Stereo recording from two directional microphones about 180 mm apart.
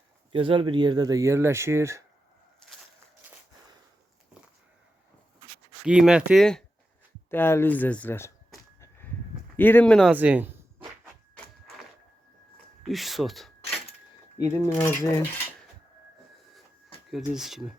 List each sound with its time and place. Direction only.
0.3 s speech: 30° right (ahead or behind)
5.8 s speech: 5° right (ahead or behind)
9.6 s speech: 10° left (ahead or behind)
10.1 s speech: 5° right (ahead or behind)
12.8 s speech: centre (ahead or behind)
14.3 s speech: 15° left (ahead or behind)
17.1 s speech: centre (ahead or behind)